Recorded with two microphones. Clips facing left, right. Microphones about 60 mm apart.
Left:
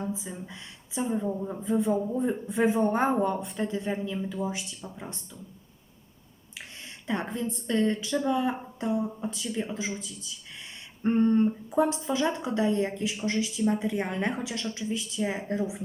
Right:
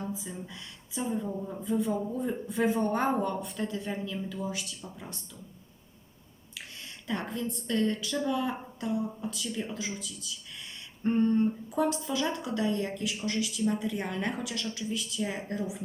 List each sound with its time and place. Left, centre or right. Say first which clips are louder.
0.0 s a woman's voice: left 3 dB; left
6.5 s a woman's voice: left 1 dB; left